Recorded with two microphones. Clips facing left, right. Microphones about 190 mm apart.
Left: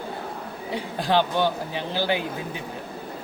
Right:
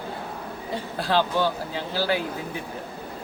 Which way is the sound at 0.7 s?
15° left (ahead or behind).